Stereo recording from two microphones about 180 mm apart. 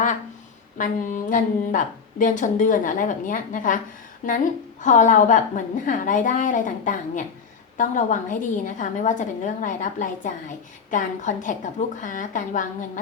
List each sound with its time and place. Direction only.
0.8 s a woman's voice: 45° left (ahead or behind)